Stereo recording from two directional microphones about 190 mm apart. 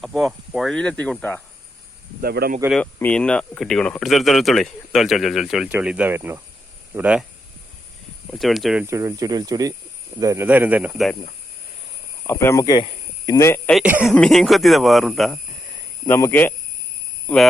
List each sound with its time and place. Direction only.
0.0 s speech: centre (ahead or behind)
2.2 s speech: 55° right (ahead or behind)
2.8 s speech: 5° left (ahead or behind)
8.3 s speech: centre (ahead or behind)
12.3 s speech: 15° left (ahead or behind)
13.7 s speech: 5° right (ahead or behind)
16.0 s speech: 10° left (ahead or behind)